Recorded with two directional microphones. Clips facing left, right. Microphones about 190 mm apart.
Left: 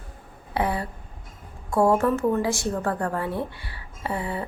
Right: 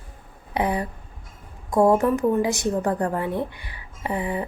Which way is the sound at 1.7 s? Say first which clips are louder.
Right 2 dB; 20° right (ahead or behind).